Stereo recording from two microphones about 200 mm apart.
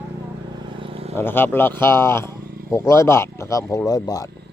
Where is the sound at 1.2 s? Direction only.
10° left (ahead or behind).